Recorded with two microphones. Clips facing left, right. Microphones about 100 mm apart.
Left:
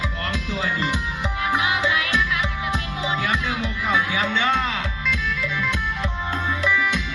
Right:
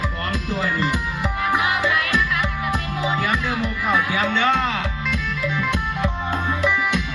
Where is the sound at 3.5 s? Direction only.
55° right (ahead or behind).